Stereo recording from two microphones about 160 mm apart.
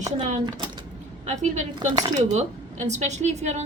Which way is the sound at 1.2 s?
45° right (ahead or behind).